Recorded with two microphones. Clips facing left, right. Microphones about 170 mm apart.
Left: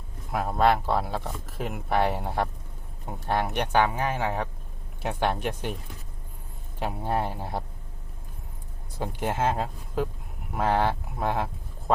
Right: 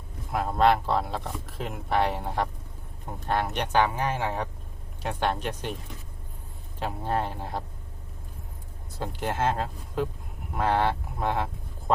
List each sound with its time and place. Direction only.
0.3 s speech: 5° left (ahead or behind)
6.7 s speech: 10° left (ahead or behind)
9.0 s speech: 10° left (ahead or behind)